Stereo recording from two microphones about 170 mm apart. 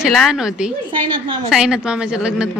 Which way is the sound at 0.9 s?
30° right (ahead or behind).